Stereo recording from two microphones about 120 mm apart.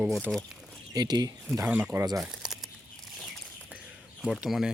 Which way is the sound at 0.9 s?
35° right (ahead or behind).